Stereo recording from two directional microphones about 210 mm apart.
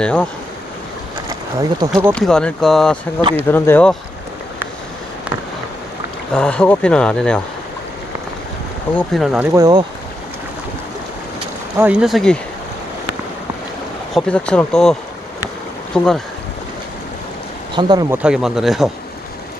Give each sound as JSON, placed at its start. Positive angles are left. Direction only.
{"t": 0.0, "sound": "speech", "side_deg": 5}
{"t": 1.3, "sound": "a sound", "side_deg": -20}
{"t": 2.1, "sound": "speech", "side_deg": 5}
{"t": 3.2, "sound": "speech", "side_deg": -20}
{"t": 3.4, "sound": "speech", "side_deg": 10}
{"t": 6.3, "sound": "speech", "side_deg": 5}
{"t": 9.0, "sound": "speech", "side_deg": 0}
{"t": 9.5, "sound": "speech", "side_deg": -15}
{"t": 11.8, "sound": "speech", "side_deg": -5}
{"t": 14.1, "sound": "speech", "side_deg": 5}
{"t": 15.9, "sound": "speech", "side_deg": 5}
{"t": 17.7, "sound": "speech", "side_deg": -20}
{"t": 18.2, "sound": "speech", "side_deg": -5}